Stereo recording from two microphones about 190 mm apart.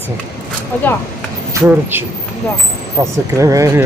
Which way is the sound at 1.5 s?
10° right (ahead or behind).